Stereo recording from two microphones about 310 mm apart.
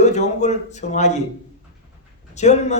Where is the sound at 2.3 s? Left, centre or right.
Left.